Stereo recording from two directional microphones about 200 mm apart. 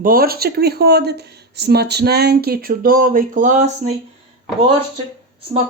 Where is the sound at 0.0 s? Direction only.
45° right (ahead or behind).